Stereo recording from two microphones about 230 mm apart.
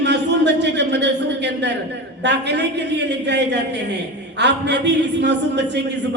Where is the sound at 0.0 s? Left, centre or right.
Right.